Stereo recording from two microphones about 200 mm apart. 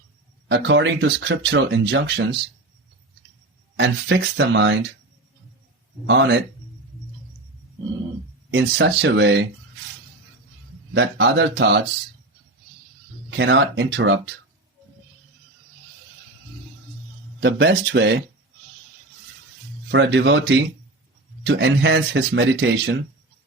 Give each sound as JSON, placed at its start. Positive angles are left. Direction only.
{"t": 0.4, "sound": "speech", "side_deg": -60}
{"t": 3.8, "sound": "speech", "side_deg": -60}
{"t": 6.1, "sound": "speech", "side_deg": -60}
{"t": 8.4, "sound": "speech", "side_deg": -60}
{"t": 10.9, "sound": "speech", "side_deg": -60}
{"t": 13.3, "sound": "speech", "side_deg": -60}
{"t": 17.4, "sound": "speech", "side_deg": -60}
{"t": 19.9, "sound": "speech", "side_deg": -65}